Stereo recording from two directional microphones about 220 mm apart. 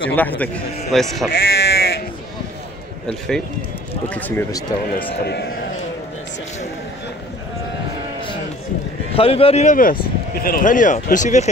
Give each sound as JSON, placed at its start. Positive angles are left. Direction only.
{"t": 0.1, "sound": "a man's voice", "side_deg": 5}
{"t": 1.3, "sound": "sheep", "side_deg": 50}
{"t": 3.1, "sound": "a man's voice", "side_deg": 5}
{"t": 5.2, "sound": "a man's voice", "side_deg": 50}
{"t": 9.1, "sound": "speech", "side_deg": 25}